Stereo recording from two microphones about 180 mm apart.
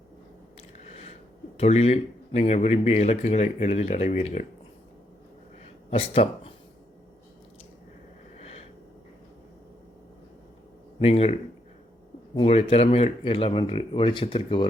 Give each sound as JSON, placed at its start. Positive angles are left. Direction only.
{"t": 0.9, "sound": "a sound", "side_deg": 35}
{"t": 1.5, "sound": "speech", "side_deg": 35}
{"t": 5.9, "sound": "speech", "side_deg": 30}
{"t": 8.4, "sound": "wheeze", "side_deg": 35}
{"t": 11.0, "sound": "speech", "side_deg": 35}
{"t": 12.4, "sound": "speech", "side_deg": 35}